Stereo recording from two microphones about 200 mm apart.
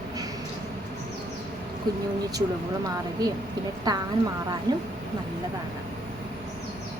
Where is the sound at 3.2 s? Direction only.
20° right (ahead or behind).